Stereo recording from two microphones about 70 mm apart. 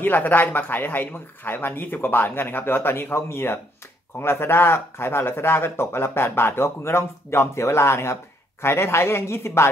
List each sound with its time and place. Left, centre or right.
0.0 s a man's voice: left